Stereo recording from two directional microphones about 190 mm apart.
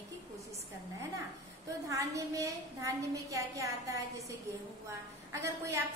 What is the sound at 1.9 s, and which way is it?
A woman's voice, 15° right (ahead or behind).